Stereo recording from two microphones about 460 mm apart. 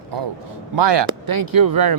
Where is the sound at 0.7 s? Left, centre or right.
Right.